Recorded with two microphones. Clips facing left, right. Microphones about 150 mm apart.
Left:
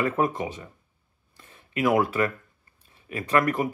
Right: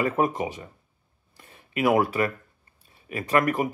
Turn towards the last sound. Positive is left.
turn(degrees=-15)  # may be behind; listen again after turning